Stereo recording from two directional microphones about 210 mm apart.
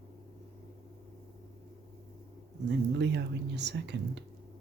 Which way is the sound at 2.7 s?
55° right (ahead or behind).